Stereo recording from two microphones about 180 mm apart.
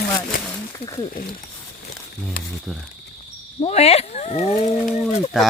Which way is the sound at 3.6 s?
35° left (ahead or behind).